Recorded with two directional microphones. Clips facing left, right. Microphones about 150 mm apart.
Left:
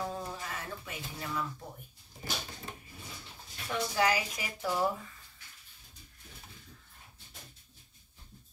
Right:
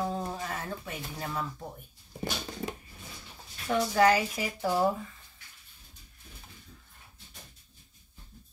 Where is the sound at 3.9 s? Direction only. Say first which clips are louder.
Right 6 dB; 45° right (ahead or behind).